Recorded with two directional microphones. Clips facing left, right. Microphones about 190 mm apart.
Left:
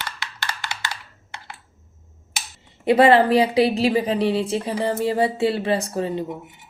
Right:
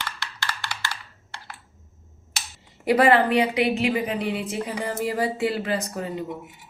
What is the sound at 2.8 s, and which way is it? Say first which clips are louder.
A woman's voice: left 4 dB; 25° left (ahead or behind).